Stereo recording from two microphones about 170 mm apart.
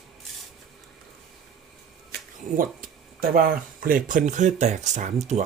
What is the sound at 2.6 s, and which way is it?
Speech, 60° right (ahead or behind).